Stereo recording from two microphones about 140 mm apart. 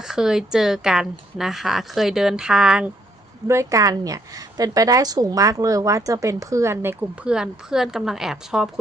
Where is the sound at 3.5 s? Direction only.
20° right (ahead or behind); by 8.7 s 5° right (ahead or behind).